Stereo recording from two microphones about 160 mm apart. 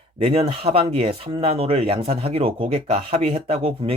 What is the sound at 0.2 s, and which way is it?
Speech, 30° right (ahead or behind).